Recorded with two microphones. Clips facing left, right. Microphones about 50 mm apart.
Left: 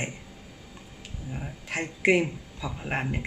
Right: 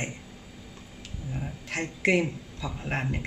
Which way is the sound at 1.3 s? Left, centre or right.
Centre.